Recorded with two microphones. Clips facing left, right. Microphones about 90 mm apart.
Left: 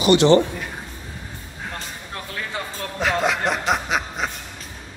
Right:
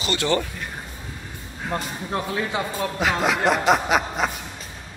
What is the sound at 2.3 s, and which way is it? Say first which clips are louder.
Speech: right 5 dB; 15° right (ahead or behind).